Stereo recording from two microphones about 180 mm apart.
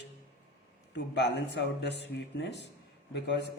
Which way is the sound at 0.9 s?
75° left (ahead or behind).